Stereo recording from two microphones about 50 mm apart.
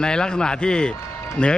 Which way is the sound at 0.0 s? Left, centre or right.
Centre.